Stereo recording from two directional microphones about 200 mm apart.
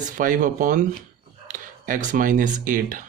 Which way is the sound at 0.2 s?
40° right (ahead or behind).